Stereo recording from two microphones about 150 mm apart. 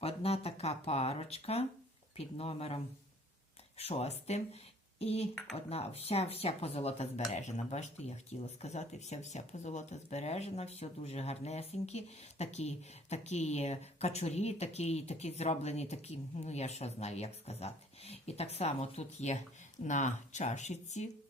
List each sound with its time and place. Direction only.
0.0 s speech: 40° left (ahead or behind)
3.8 s speech: 45° left (ahead or behind)